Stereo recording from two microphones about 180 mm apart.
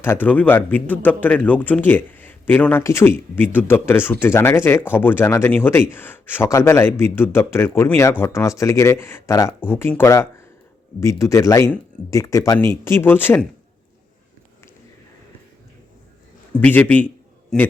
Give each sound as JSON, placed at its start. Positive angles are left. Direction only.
{"t": 0.0, "sound": "a man's voice", "side_deg": 10}
{"t": 16.6, "sound": "a man's voice", "side_deg": 10}